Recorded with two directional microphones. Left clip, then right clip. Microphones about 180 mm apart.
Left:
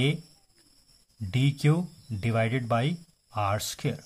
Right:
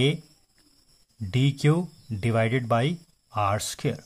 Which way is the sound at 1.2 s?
15° right (ahead or behind).